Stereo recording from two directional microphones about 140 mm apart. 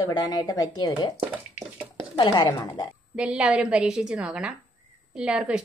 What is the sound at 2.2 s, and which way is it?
Speech, 35° left (ahead or behind).